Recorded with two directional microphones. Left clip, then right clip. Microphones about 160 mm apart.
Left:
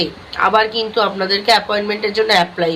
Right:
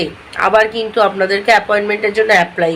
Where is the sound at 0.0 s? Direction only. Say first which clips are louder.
Right 1 dB; 15° right (ahead or behind).